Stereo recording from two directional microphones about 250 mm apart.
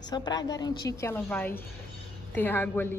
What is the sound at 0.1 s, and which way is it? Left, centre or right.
A woman's voice, centre.